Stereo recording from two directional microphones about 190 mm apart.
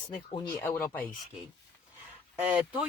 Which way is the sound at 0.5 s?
15° left (ahead or behind).